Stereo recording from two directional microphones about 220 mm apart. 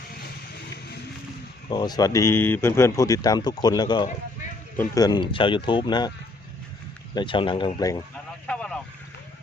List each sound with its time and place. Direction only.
1.7 s speech: 20° left (ahead or behind)
8.4 s vehicle: 5° left (ahead or behind)